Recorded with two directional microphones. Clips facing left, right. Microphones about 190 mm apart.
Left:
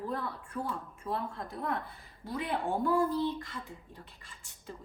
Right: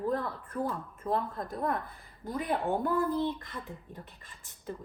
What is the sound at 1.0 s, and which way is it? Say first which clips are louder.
A woman's voice: right 5 dB; 50° right (ahead or behind).